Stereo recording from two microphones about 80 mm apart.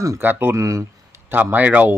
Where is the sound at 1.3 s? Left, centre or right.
Right.